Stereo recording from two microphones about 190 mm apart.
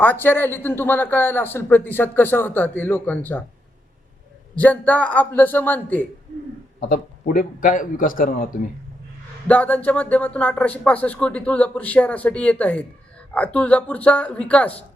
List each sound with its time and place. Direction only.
0.0 s a man's voice: 10° left (ahead or behind)
4.5 s a man's voice: 10° left (ahead or behind)
6.7 s a man's voice: 50° left (ahead or behind)
9.5 s a man's voice: 10° left (ahead or behind)